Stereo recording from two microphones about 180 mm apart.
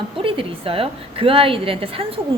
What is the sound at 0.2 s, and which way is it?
A woman's voice, 30° right (ahead or behind).